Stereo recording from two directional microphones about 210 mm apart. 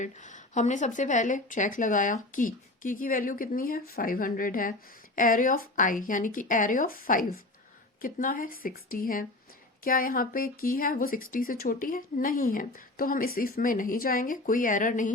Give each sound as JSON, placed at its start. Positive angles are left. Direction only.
{"t": 0.0, "sound": "speech", "side_deg": 35}